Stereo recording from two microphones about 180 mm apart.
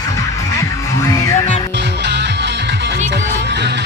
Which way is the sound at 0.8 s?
15° left (ahead or behind).